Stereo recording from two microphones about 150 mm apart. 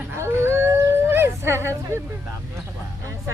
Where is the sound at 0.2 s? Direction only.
15° right (ahead or behind).